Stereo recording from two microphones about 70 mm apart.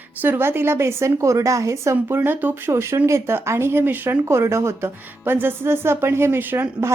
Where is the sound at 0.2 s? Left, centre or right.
Right.